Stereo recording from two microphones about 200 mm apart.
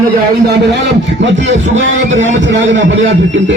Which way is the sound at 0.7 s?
65° right (ahead or behind).